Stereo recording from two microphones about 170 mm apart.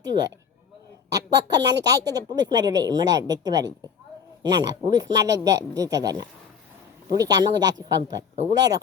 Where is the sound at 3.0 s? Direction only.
90° right.